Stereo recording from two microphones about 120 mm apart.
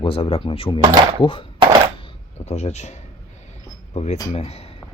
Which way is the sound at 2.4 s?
65° left (ahead or behind).